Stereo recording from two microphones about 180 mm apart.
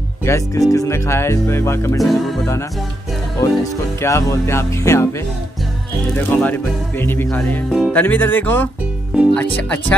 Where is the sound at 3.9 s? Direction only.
15° left (ahead or behind).